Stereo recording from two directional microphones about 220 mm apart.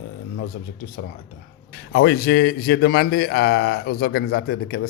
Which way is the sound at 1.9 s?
45° left (ahead or behind).